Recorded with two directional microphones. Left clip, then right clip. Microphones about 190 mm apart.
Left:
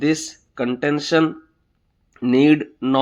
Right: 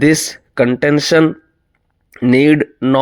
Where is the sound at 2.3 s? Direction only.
45° right (ahead or behind).